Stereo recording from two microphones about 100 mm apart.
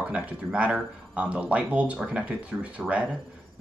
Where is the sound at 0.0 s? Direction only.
15° right (ahead or behind).